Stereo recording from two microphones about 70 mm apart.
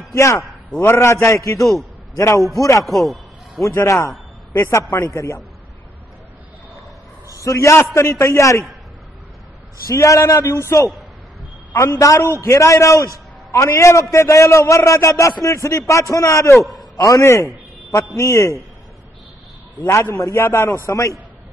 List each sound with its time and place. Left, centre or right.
0.1 s a man's voice: left
1.6 s a man's voice: centre
2.1 s a man's voice: left
2.8 s a sound: centre
3.6 s a man's voice: left
7.2 s a man's voice: left
9.9 s a man's voice: left
11.7 s a man's voice: left
16.9 s a man's voice: left
17.2 s a man's voice: left
19.9 s a man's voice: left